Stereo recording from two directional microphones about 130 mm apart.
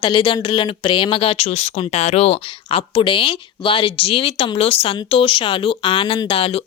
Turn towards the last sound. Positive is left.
turn(degrees=45)  # may be behind; listen again after turning